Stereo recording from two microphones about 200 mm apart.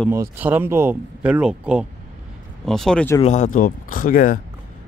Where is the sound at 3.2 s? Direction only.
35° left (ahead or behind).